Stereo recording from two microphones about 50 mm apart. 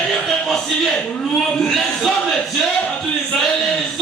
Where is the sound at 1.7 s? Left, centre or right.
Centre.